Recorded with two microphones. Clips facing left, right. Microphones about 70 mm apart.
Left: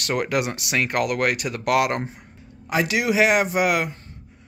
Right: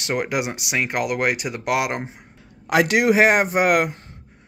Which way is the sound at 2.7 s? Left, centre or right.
Right.